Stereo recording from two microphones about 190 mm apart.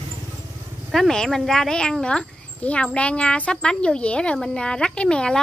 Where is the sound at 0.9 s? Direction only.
Centre (ahead or behind).